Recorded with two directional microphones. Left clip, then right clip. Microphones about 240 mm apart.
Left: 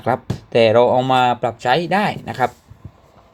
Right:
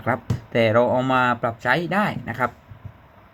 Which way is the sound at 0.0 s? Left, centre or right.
Centre.